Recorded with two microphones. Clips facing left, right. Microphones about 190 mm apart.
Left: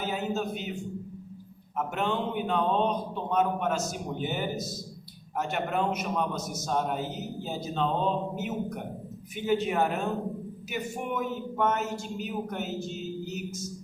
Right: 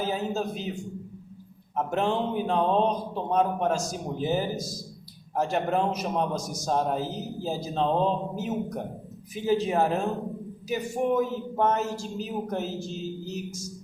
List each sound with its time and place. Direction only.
0.0 s a woman's voice: 35° right (ahead or behind)
1.7 s a woman's voice: 35° right (ahead or behind)